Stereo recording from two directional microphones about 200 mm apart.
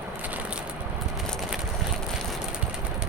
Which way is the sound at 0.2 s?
10° right (ahead or behind).